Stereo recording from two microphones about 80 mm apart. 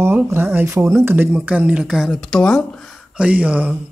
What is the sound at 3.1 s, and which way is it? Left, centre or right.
Speech, centre.